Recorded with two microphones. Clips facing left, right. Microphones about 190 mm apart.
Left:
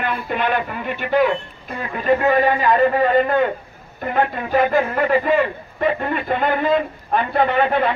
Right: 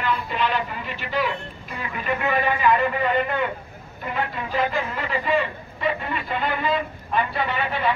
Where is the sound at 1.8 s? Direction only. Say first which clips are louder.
Left 8 dB; 40° left (ahead or behind).